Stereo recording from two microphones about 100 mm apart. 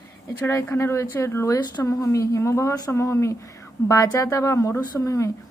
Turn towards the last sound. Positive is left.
turn(degrees=30)  # may be behind; listen again after turning